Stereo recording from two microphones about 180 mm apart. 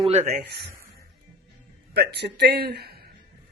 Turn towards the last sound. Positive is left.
turn(degrees=-60)  # may be behind; listen again after turning